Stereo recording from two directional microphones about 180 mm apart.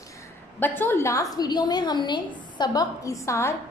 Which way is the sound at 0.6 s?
10° left (ahead or behind).